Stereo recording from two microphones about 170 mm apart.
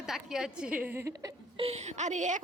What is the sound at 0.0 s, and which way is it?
A woman's voice, 5° right (ahead or behind).